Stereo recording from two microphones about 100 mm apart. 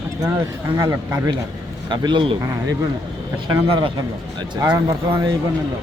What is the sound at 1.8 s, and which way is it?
Speech, 50° right (ahead or behind).